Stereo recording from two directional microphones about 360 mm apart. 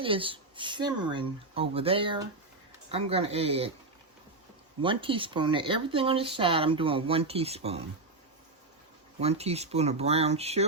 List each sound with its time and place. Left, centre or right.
0.0 s speech: centre
4.8 s speech: centre
9.2 s speech: centre